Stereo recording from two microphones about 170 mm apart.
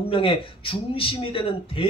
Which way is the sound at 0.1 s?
30° left (ahead or behind).